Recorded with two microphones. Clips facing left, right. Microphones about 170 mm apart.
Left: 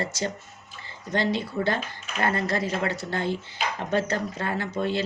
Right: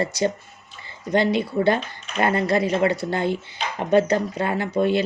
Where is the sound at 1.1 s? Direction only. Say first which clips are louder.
Right 6 dB; 15° right (ahead or behind).